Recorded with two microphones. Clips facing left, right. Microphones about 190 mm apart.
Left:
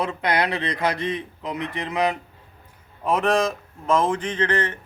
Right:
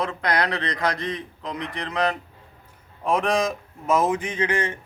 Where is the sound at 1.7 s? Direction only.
20° left (ahead or behind).